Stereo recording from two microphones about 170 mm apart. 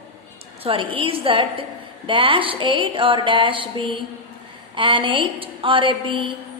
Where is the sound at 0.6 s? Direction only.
30° right (ahead or behind).